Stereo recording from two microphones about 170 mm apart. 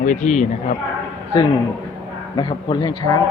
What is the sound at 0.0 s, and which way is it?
Speech, 50° left (ahead or behind).